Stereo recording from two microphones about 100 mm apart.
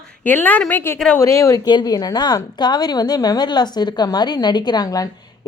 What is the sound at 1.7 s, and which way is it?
A woman's voice, 45° left (ahead or behind).